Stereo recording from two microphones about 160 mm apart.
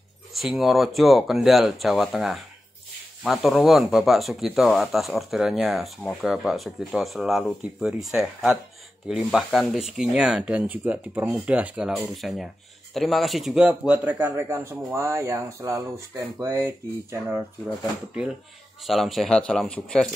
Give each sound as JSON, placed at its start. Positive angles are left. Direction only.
{"t": 0.3, "sound": "speech", "side_deg": 0}
{"t": 18.8, "sound": "speech", "side_deg": 0}